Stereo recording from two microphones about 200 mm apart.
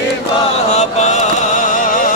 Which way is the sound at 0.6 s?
35° left (ahead or behind).